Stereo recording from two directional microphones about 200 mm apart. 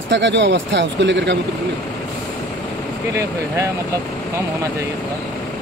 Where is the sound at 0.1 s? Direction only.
65° right (ahead or behind).